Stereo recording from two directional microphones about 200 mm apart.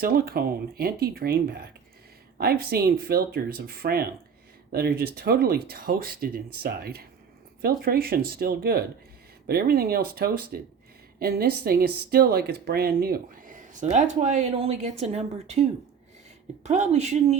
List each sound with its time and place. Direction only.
0.0 s speech: 50° right (ahead or behind); by 15.6 s 30° right (ahead or behind)
16.6 s speech: 35° right (ahead or behind)